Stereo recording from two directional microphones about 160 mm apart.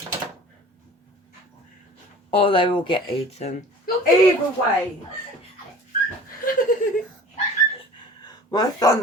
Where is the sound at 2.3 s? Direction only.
35° left (ahead or behind).